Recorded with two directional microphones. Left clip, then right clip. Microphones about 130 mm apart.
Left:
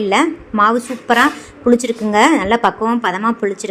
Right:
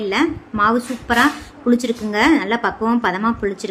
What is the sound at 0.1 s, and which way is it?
A woman's voice, 30° left (ahead or behind).